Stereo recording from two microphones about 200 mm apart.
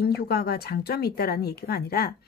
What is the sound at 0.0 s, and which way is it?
Speech, 55° left (ahead or behind).